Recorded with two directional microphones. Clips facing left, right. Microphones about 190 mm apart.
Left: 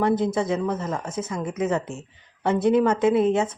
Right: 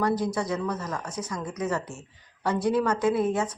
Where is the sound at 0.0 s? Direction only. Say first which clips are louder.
Left 4 dB; 25° left (ahead or behind).